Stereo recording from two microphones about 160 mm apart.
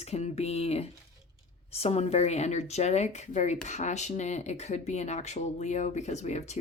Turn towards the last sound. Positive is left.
turn(degrees=45)  # may be behind; listen again after turning